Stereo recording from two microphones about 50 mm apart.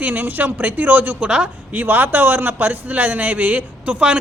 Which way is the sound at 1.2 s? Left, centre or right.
Centre.